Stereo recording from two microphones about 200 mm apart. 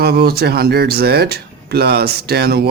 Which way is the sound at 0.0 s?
50° right (ahead or behind).